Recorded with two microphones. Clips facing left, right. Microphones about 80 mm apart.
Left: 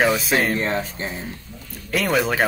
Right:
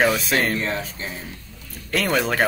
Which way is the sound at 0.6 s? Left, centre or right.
Left.